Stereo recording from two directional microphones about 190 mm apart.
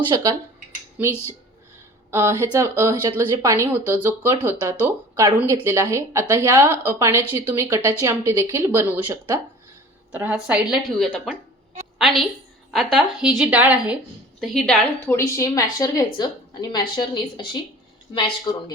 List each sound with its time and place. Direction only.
0.1 s speech: 20° right (ahead or behind)
1.0 s a woman's voice: 5° right (ahead or behind)
15.0 s a woman's voice: 15° left (ahead or behind)